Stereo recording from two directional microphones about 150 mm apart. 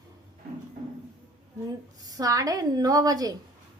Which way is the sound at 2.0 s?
25° right (ahead or behind).